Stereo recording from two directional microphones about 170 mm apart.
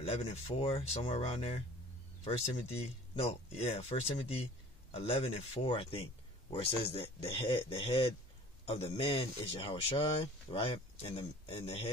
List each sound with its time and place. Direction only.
0.0 s speech: 35° left (ahead or behind)